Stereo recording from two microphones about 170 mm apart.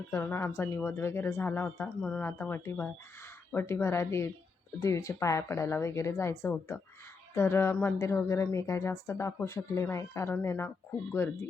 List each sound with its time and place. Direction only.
0.1 s speech: 15° left (ahead or behind)